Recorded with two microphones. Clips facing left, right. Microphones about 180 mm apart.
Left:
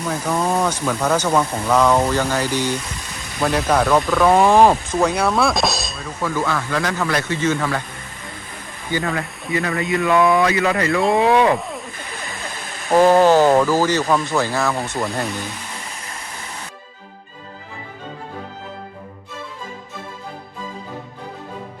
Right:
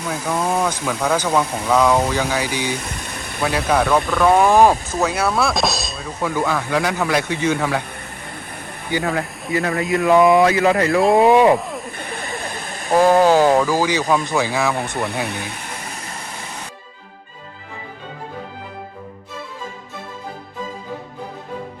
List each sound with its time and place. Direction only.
0.0 s speech: 5° right (ahead or behind)
2.9 s a sound: 60° right (ahead or behind)
3.7 s speech: centre (ahead or behind)
6.2 s speech: 15° right (ahead or behind)
9.0 s speech: centre (ahead or behind)
10.1 s speech: 20° right (ahead or behind)
10.3 s speech: centre (ahead or behind)
12.9 s speech: 5° right (ahead or behind)
15.0 s speech: centre (ahead or behind)
15.3 s speech: 60° right (ahead or behind)